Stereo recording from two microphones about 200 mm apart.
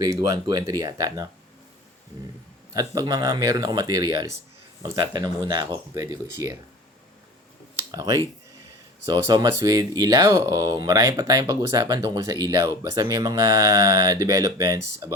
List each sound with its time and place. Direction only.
0.0 s speech: 15° right (ahead or behind)
2.7 s speech: 20° right (ahead or behind)
7.8 s a sound: 20° right (ahead or behind)
9.0 s speech: 20° right (ahead or behind)